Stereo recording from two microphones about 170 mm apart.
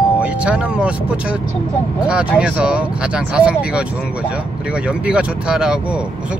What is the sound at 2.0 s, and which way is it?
Speech, 5° right (ahead or behind).